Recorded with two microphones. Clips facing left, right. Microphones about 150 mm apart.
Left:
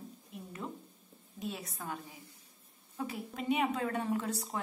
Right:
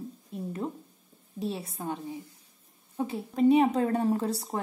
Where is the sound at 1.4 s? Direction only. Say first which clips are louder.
Right 7 dB; 30° right (ahead or behind).